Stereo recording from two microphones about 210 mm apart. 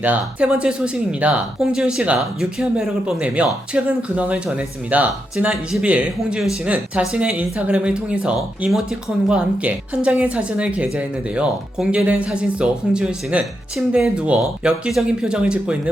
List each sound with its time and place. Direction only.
0.0 s speech: 5° right (ahead or behind)